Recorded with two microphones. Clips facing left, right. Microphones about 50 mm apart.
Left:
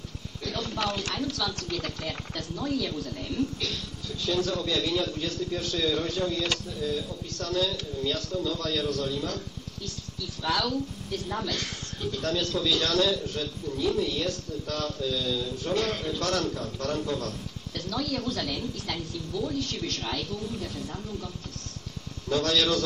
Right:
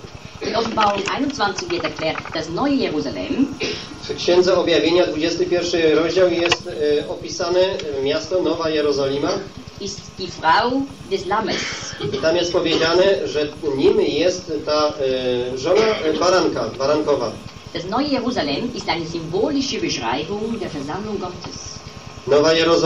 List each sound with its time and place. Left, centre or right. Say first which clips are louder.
0.4 s a woman's voice: right 13 dB; right
22.3 s a man's voice: right 11 dB; right